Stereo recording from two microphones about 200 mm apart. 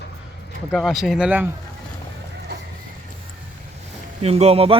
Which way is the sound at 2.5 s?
55° right (ahead or behind).